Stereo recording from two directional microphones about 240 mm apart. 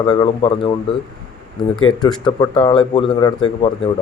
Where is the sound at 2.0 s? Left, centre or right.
Centre.